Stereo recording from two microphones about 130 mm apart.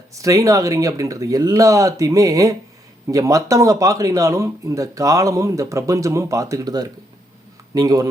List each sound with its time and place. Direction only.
0.1 s speech: 25° right (ahead or behind)